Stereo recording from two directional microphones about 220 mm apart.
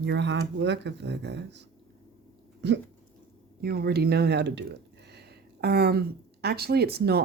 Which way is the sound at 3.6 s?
45° right (ahead or behind).